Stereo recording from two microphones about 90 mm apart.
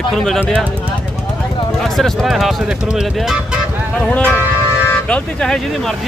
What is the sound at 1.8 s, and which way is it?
Speech, 5° left (ahead or behind).